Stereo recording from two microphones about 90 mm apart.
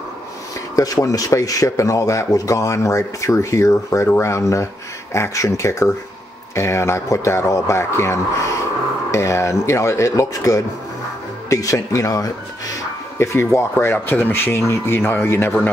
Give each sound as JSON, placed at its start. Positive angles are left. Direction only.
{"t": 0.7, "sound": "speech", "side_deg": 40}